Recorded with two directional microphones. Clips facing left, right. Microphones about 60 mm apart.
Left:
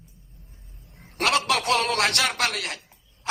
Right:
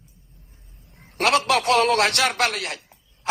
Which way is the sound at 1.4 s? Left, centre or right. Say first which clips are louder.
Right 4 dB; right.